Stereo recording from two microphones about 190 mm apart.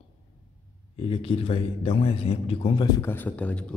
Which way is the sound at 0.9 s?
30° left (ahead or behind).